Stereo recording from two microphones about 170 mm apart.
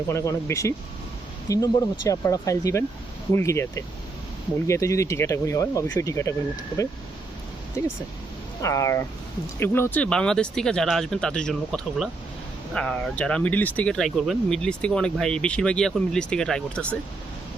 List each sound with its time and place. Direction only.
0.1 s speech: 15° left (ahead or behind)
7.8 s speech: 15° left (ahead or behind)